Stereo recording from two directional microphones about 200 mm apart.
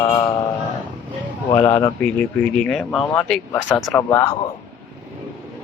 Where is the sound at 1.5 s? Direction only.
10° left (ahead or behind).